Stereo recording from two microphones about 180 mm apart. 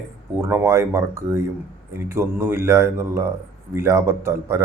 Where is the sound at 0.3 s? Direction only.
15° right (ahead or behind).